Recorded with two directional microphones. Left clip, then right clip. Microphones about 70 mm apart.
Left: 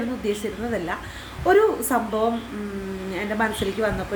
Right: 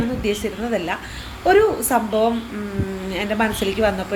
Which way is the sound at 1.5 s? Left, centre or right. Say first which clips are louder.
Right 3 dB; left.